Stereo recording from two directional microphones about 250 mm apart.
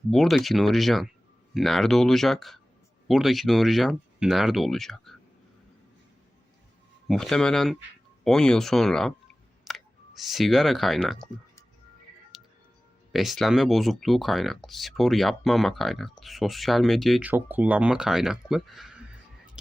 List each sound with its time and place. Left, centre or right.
0.1 s speech: centre
7.1 s speech: centre
13.1 s speech: centre